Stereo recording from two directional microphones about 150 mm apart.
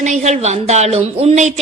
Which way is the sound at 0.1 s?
50° right (ahead or behind).